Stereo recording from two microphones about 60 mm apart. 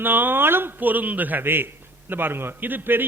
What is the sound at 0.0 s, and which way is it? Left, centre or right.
A man's voice, right.